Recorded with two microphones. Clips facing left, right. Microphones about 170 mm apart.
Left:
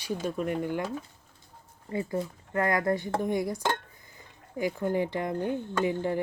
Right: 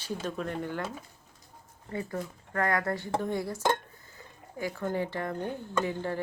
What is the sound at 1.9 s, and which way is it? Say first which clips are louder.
Speech: left 4 dB; 20° left (ahead or behind).